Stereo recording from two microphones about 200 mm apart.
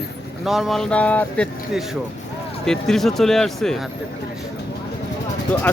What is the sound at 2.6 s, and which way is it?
Speech, 5° left (ahead or behind).